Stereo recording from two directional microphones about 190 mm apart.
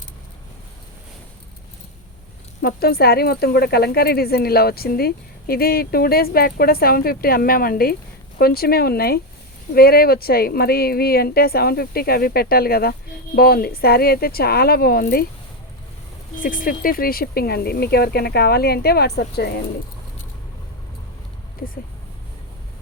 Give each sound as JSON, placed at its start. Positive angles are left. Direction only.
{"t": 2.6, "sound": "speech", "side_deg": 55}
{"t": 16.4, "sound": "speech", "side_deg": 45}